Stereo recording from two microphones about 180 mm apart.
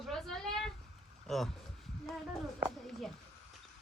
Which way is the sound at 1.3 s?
Centre (ahead or behind).